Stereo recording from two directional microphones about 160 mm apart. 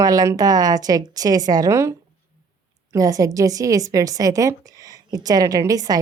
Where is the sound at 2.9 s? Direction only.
20° right (ahead or behind).